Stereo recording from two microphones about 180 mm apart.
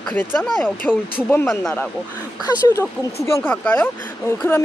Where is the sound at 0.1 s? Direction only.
10° left (ahead or behind).